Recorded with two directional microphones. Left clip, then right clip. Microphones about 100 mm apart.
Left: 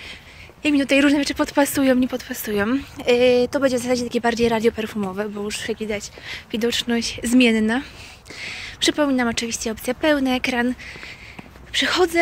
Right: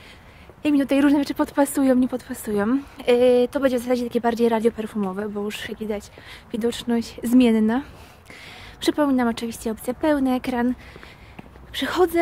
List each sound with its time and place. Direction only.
0.6 s a woman's voice: 50° right (ahead or behind)
5.1 s speech: 30° right (ahead or behind)
5.5 s a woman's voice: 50° right (ahead or behind)